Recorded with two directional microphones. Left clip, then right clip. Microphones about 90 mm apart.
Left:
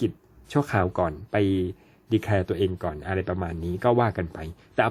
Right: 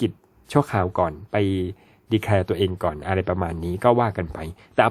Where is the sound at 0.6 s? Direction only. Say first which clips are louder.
Right 1 dB; 25° right (ahead or behind); by 3.9 s 40° right (ahead or behind).